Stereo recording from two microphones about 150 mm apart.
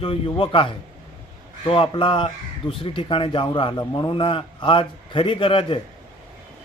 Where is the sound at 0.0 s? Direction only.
35° left (ahead or behind).